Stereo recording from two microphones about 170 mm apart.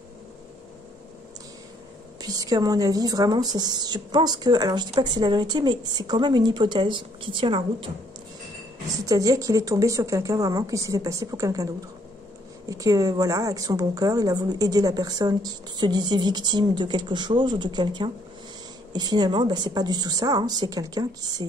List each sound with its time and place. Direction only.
2.2 s a woman's voice: 20° right (ahead or behind)
9.0 s a woman's voice: 20° right (ahead or behind)